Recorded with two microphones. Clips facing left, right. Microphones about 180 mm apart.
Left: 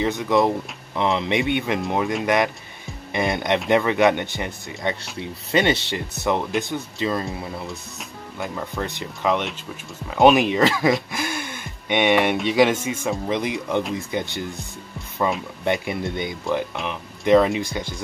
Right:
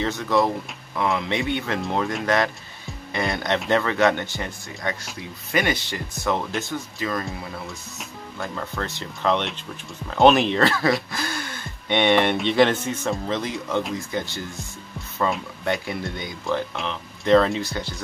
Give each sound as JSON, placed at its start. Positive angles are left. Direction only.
{"t": 0.0, "sound": "speech", "side_deg": 15}
{"t": 8.4, "sound": "speech", "side_deg": 15}
{"t": 15.6, "sound": "speech", "side_deg": 20}